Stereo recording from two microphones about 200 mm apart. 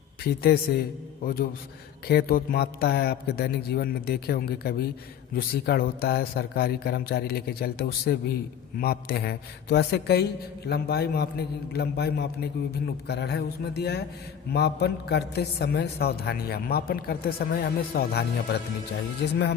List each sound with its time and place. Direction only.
0.3 s a man's voice: 50° left (ahead or behind)